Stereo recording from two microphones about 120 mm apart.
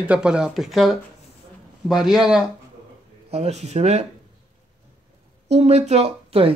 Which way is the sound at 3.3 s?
60° right (ahead or behind).